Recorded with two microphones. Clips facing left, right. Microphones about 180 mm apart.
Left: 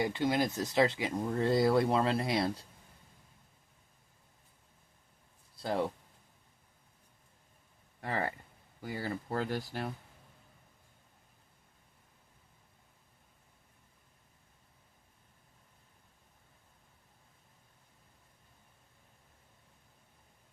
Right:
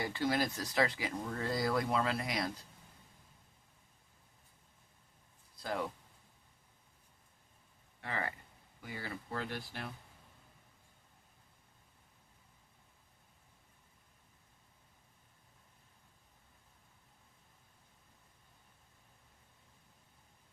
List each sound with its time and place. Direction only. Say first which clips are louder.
0.0 s speech: left 4 dB; 20° left (ahead or behind)
5.6 s speech: left 5 dB; 30° left (ahead or behind)
8.0 s speech: left 5 dB; 40° left (ahead or behind)